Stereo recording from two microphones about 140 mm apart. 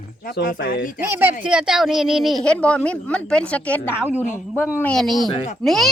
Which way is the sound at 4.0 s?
10° right (ahead or behind).